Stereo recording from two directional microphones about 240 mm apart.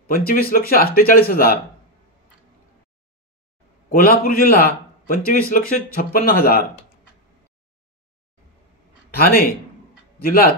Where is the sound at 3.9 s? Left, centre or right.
Left.